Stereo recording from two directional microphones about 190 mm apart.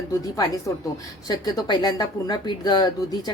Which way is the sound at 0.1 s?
20° left (ahead or behind).